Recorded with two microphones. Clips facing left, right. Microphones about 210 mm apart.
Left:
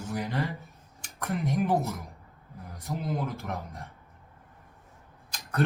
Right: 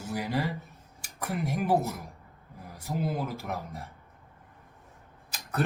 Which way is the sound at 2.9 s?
30° right (ahead or behind).